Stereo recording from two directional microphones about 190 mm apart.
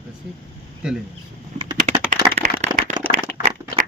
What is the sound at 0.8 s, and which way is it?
Speech, 5° right (ahead or behind).